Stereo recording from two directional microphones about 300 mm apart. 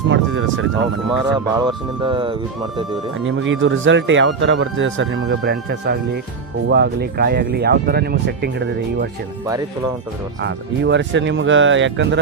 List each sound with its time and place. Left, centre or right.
0.1 s speech: right
1.1 s speech: centre
3.2 s speech: right
10.4 s speech: right